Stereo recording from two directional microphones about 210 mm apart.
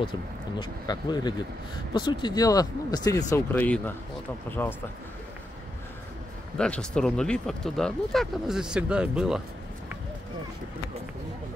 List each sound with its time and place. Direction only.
0.6 s speech: 20° left (ahead or behind)
6.5 s speech: 5° left (ahead or behind)